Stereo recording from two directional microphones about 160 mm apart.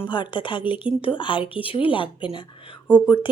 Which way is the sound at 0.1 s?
30° left (ahead or behind).